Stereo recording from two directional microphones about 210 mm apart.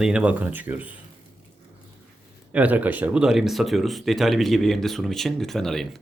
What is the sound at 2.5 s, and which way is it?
Speech, 5° right (ahead or behind).